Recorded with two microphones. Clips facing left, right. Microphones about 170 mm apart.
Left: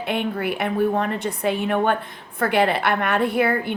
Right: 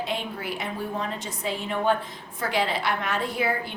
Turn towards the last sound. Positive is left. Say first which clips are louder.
# left 7 dB
turn(degrees=60)  # may be behind; listen again after turning